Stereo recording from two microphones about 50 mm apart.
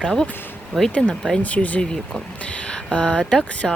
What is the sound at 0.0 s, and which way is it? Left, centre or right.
Speech, centre.